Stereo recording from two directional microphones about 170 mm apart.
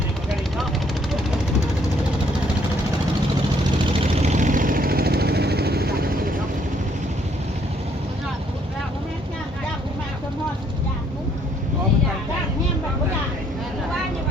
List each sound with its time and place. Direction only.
3.9 s vehicle: 40° right (ahead or behind); by 6.2 s 60° right (ahead or behind)